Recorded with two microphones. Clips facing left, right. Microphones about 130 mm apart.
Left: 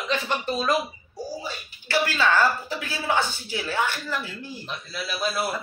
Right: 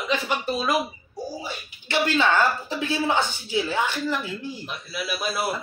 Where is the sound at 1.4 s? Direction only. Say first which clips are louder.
Right 1 dB; 20° right (ahead or behind).